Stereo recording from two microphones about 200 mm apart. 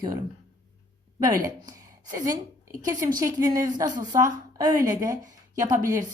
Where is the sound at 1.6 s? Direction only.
15° right (ahead or behind).